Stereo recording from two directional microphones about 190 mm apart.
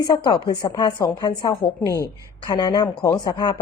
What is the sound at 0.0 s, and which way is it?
Speech, 25° left (ahead or behind).